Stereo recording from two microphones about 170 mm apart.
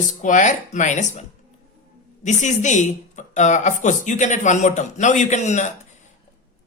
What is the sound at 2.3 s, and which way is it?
A man's voice, 45° left (ahead or behind).